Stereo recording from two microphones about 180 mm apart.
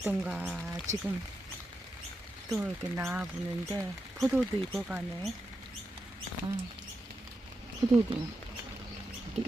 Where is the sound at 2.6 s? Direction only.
10° right (ahead or behind).